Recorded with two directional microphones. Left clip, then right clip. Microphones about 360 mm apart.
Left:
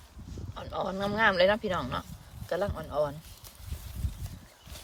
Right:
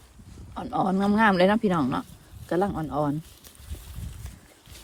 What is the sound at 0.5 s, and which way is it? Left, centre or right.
Speech, centre.